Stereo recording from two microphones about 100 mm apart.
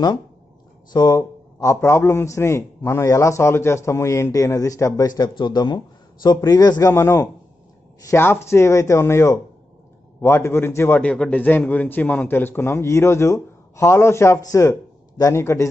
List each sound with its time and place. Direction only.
0.9 s a man's voice: 40° left (ahead or behind)
6.9 s a man's voice: 25° left (ahead or behind)